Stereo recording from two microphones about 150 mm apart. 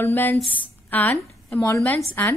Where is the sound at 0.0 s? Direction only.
15° left (ahead or behind).